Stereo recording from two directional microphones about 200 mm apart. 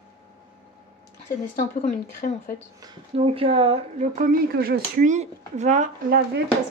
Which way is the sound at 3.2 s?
30° right (ahead or behind).